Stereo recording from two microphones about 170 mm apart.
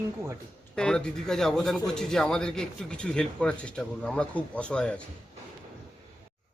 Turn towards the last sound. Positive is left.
turn(degrees=5)  # may be behind; listen again after turning